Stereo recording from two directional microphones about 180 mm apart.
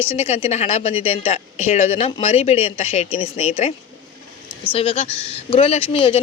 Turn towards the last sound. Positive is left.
turn(degrees=30)  # may be behind; listen again after turning